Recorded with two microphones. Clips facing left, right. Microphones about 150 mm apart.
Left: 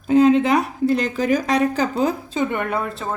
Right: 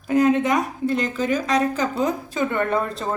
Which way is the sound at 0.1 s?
25° left (ahead or behind).